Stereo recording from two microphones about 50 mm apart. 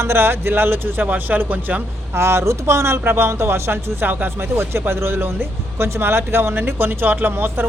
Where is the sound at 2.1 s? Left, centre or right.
Right.